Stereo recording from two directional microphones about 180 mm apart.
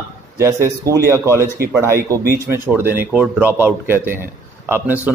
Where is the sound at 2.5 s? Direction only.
10° right (ahead or behind).